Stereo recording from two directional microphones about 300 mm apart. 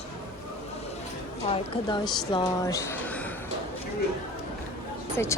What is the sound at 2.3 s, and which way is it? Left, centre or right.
Speech, centre.